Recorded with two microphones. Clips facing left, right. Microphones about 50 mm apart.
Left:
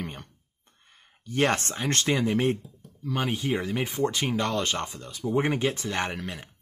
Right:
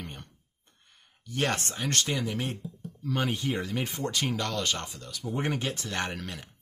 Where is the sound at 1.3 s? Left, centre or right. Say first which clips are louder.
Left 5 dB; left.